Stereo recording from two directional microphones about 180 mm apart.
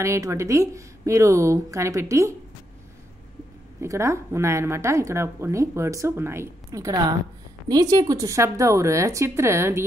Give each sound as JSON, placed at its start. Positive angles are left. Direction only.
{"t": 0.0, "sound": "speech", "side_deg": -15}
{"t": 3.8, "sound": "speech", "side_deg": -15}